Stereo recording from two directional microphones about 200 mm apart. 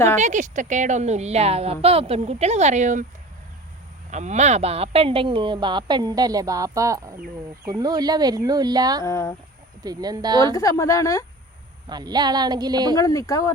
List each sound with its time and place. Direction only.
0.2 s a woman's voice: 40° right (ahead or behind)
4.1 s speech: 35° right (ahead or behind); by 9.0 s 20° right (ahead or behind)
9.0 s speech: 15° left (ahead or behind)
9.8 s speech: 20° right (ahead or behind)
10.5 s speech: 15° left (ahead or behind)
11.9 s speech: 20° right (ahead or behind)
13.0 s speech: 15° left (ahead or behind)